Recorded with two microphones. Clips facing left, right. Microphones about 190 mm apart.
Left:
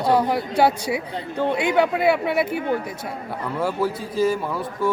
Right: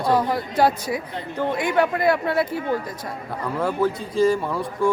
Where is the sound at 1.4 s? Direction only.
15° left (ahead or behind).